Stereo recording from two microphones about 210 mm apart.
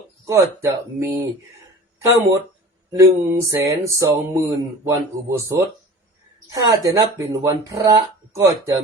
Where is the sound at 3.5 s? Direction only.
15° right (ahead or behind).